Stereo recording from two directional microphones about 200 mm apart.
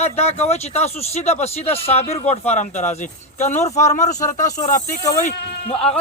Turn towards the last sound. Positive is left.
turn(degrees=30)  # may be behind; listen again after turning